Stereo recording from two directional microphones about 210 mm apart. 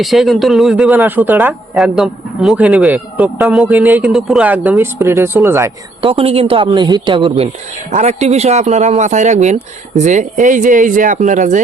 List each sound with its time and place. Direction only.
0.0 s a man's voice: centre (ahead or behind)
6.0 s speech: 25° right (ahead or behind)